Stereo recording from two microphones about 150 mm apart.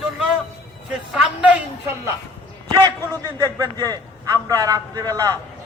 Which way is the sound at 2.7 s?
30° right (ahead or behind).